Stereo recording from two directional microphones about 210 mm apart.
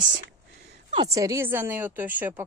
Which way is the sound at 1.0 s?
15° right (ahead or behind).